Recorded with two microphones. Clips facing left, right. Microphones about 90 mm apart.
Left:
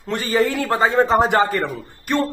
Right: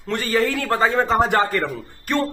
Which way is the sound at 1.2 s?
25° left (ahead or behind).